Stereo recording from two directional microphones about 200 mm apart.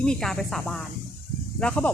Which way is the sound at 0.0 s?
5° left (ahead or behind).